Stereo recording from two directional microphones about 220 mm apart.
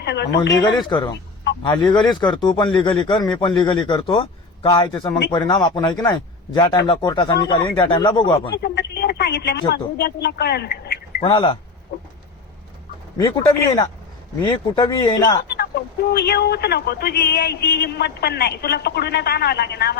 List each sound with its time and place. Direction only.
0.0 s speech: 50° left (ahead or behind)
0.6 s speech: 20° left (ahead or behind)
8.5 s speech: 50° left (ahead or behind)
11.2 s speech: 20° left (ahead or behind)
13.1 s speech: 15° left (ahead or behind)
15.4 s speech: 45° left (ahead or behind)